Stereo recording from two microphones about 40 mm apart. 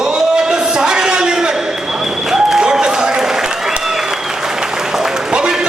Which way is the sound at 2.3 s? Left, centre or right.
Centre.